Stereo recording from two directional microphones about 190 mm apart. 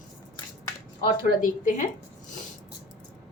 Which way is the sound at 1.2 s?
45° left (ahead or behind).